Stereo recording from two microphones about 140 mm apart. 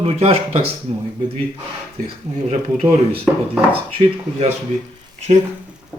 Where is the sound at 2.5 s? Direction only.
55° right (ahead or behind).